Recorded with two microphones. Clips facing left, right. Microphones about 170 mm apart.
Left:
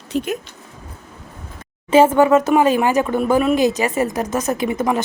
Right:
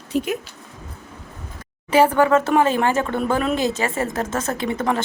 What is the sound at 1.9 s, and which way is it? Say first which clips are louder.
A woman's voice: left 3 dB; 20° left (ahead or behind).